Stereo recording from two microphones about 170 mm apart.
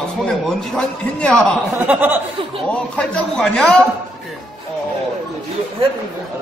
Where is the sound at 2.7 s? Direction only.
5° left (ahead or behind).